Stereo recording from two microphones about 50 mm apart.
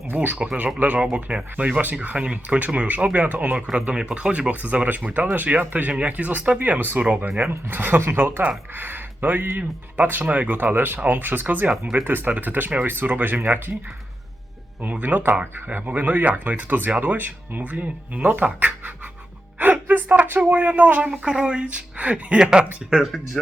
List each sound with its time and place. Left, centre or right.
0.1 s speech: right
3.7 s speech: centre; by 13.7 s right
14.8 s speech: right
21.2 s speech: centre